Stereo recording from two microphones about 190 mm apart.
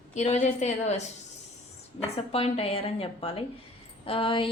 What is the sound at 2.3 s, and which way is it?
A woman's voice, 30° left (ahead or behind).